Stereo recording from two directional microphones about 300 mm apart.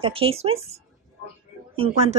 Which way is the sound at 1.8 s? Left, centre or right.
Right.